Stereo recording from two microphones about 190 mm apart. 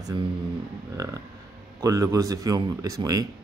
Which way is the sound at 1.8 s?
20° right (ahead or behind).